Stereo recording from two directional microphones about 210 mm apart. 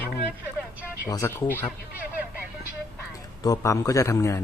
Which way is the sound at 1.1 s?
15° left (ahead or behind).